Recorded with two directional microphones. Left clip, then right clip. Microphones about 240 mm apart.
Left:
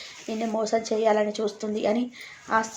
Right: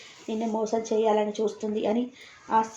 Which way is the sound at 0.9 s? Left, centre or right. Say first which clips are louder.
Even; centre.